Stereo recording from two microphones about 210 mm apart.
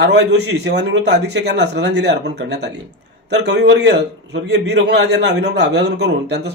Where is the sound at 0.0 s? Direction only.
55° right (ahead or behind).